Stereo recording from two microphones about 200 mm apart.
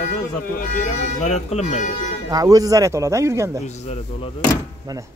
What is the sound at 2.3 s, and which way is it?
Speech, 20° right (ahead or behind).